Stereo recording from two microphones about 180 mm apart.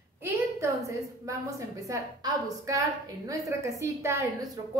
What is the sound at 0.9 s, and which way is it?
A woman's voice, 15° right (ahead or behind).